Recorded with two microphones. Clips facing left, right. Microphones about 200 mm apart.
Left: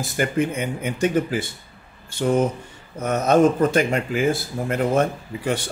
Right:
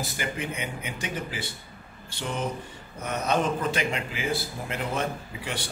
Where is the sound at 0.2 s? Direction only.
50° left (ahead or behind).